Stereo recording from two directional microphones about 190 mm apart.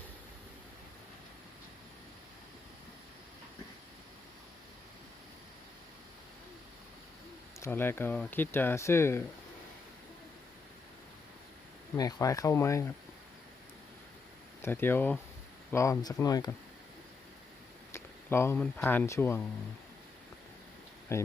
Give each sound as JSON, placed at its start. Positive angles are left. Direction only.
{"t": 7.6, "sound": "speech", "side_deg": 10}
{"t": 11.9, "sound": "speech", "side_deg": 20}
{"t": 14.6, "sound": "speech", "side_deg": 10}
{"t": 17.9, "sound": "speech", "side_deg": 15}
{"t": 21.1, "sound": "speech", "side_deg": 15}